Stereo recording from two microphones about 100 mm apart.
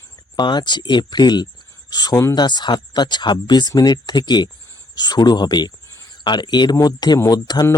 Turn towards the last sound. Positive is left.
turn(degrees=40)  # may be behind; listen again after turning